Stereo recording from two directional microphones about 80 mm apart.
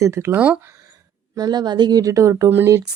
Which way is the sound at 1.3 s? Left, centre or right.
Right.